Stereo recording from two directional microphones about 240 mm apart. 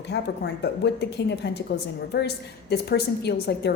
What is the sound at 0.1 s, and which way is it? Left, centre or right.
A woman's voice, left.